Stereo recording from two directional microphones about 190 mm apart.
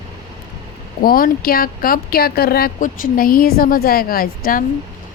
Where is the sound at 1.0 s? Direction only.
50° left (ahead or behind).